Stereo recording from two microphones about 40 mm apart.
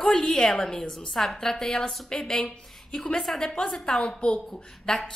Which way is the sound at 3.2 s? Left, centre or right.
Centre.